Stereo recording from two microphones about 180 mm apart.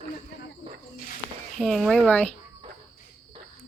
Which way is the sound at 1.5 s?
Centre (ahead or behind).